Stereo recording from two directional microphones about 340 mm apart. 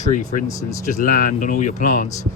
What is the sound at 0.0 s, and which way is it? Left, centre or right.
Speech, left.